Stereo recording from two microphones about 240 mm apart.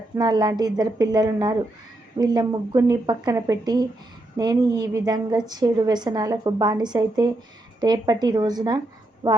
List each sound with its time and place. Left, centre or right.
0.2 s a woman's voice: centre